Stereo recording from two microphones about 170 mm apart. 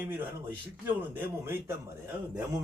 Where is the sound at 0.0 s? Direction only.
10° right (ahead or behind).